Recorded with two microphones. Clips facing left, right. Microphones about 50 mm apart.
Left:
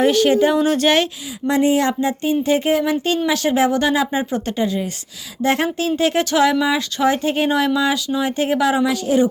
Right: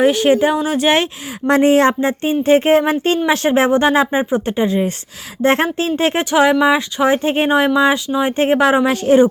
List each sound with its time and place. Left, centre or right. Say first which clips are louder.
0.0 s speech: right 2 dB; centre
0.9 s speech: right 4 dB; right
1.5 s speech: right 5 dB; right